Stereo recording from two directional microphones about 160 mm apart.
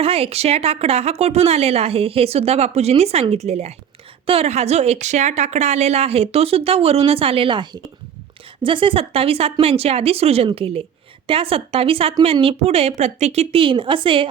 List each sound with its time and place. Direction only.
0.0 s a woman's voice: 40° right (ahead or behind)